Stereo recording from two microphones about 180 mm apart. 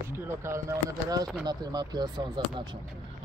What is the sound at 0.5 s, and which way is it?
Speech, 20° right (ahead or behind).